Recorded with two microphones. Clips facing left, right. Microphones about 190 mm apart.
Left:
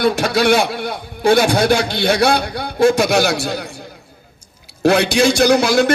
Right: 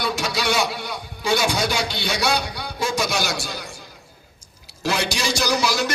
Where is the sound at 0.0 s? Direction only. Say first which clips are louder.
Left 9 dB; 55° left (ahead or behind).